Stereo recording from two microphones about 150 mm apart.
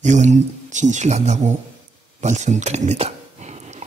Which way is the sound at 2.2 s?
50° right (ahead or behind).